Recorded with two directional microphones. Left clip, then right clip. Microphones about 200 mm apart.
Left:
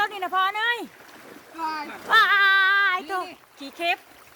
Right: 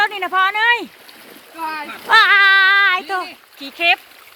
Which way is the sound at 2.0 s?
20° right (ahead or behind).